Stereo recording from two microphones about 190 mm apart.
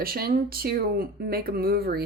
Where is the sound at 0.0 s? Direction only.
50° right (ahead or behind).